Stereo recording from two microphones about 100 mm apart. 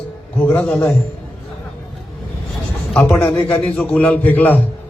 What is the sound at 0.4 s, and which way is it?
Speech, 15° left (ahead or behind).